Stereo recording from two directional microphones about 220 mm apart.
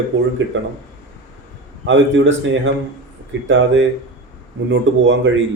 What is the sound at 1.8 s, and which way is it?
Speech, 55° right (ahead or behind).